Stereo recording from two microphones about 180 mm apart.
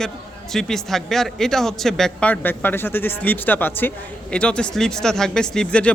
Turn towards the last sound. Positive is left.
turn(degrees=5)  # may be behind; listen again after turning